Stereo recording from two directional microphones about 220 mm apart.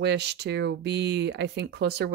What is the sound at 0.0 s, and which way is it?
Speech, 50° right (ahead or behind).